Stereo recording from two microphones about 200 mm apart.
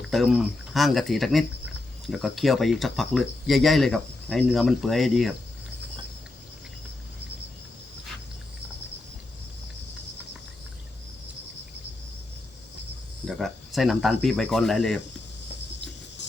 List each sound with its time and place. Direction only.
0.0 s speech: centre (ahead or behind)
13.2 s speech: centre (ahead or behind)